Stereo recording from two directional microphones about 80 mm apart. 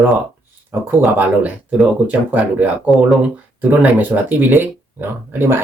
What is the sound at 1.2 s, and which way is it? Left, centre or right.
Speech, centre.